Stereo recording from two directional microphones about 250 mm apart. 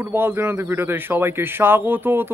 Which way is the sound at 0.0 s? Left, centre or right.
Centre.